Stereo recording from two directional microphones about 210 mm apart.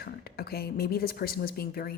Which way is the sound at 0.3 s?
45° left (ahead or behind).